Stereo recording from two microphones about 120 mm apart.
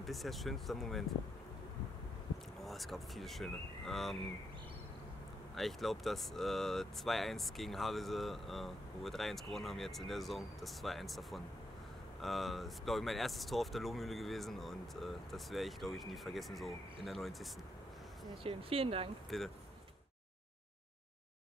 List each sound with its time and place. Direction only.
0.0 s speech: centre (ahead or behind)
2.6 s speech: centre (ahead or behind)
5.6 s speech: centre (ahead or behind)
18.4 s speech: 50° right (ahead or behind)
19.3 s speech: centre (ahead or behind)